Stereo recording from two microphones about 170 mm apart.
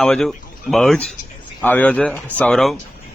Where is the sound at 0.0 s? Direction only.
5° left (ahead or behind).